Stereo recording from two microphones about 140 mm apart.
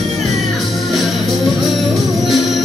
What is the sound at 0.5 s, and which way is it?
Music, centre (ahead or behind).